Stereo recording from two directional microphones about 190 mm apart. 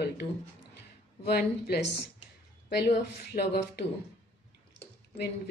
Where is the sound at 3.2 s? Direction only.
55° left (ahead or behind).